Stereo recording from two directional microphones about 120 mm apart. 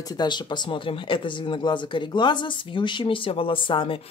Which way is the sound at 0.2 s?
40° left (ahead or behind).